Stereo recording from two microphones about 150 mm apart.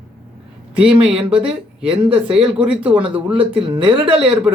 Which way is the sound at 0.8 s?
5° right (ahead or behind).